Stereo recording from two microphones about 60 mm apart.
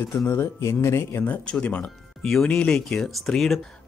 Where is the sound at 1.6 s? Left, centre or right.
Left.